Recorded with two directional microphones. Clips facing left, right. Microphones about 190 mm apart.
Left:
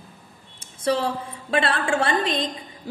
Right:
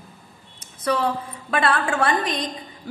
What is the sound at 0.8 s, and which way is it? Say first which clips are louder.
A woman's voice: even; 25° left (ahead or behind).